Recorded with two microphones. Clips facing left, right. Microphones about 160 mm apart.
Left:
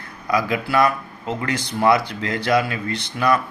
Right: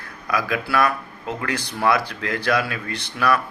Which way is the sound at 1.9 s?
25° left (ahead or behind).